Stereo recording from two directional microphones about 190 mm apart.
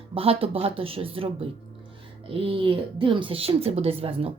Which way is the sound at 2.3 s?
30° right (ahead or behind).